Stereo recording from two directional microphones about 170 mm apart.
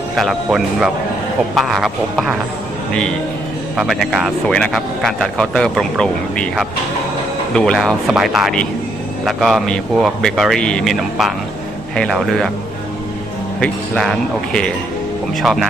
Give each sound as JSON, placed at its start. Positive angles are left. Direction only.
{"t": 0.1, "sound": "speech", "side_deg": 0}
{"t": 13.6, "sound": "speech", "side_deg": 5}